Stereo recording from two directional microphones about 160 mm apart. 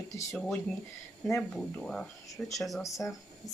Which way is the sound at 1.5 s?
5° left (ahead or behind).